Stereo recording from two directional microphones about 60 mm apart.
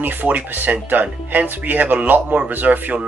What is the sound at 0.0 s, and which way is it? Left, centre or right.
Speech, right.